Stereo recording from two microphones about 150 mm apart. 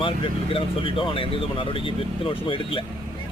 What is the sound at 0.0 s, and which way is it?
Speech, 35° left (ahead or behind).